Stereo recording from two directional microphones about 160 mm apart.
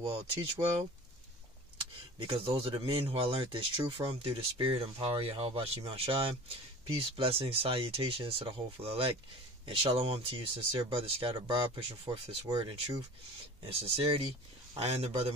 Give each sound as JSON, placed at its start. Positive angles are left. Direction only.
{"t": 0.0, "sound": "speech", "side_deg": -30}
{"t": 2.1, "sound": "speech", "side_deg": -35}
{"t": 13.7, "sound": "speech", "side_deg": -35}